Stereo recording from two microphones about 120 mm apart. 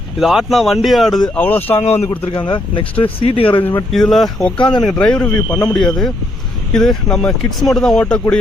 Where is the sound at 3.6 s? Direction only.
20° left (ahead or behind).